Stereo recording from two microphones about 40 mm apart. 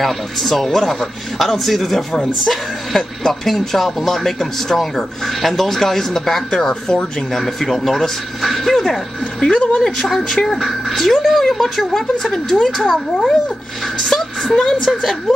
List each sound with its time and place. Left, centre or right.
0.0 s speech: centre
9.5 s speech: left
9.8 s speech: centre